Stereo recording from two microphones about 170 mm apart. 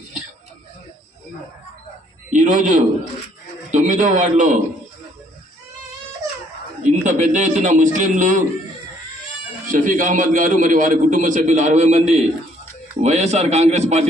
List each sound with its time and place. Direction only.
2.3 s a man's voice: 50° right (ahead or behind)
7.0 s a man's voice: 45° right (ahead or behind)
9.7 s a man's voice: 50° right (ahead or behind)